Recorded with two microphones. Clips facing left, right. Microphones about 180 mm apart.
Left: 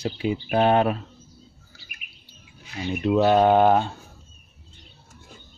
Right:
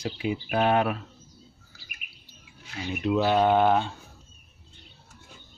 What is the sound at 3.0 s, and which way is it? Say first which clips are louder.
Mantra: left 4 dB; 40° left (ahead or behind).